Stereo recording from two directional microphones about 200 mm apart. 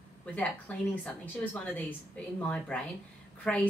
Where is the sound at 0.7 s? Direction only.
5° left (ahead or behind).